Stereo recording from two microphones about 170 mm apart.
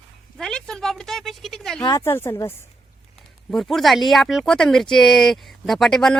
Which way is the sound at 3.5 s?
Centre (ahead or behind).